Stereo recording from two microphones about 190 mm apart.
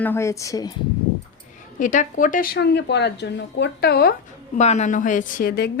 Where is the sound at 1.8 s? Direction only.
45° left (ahead or behind).